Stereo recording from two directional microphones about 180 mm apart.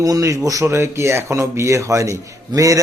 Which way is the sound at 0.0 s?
20° right (ahead or behind).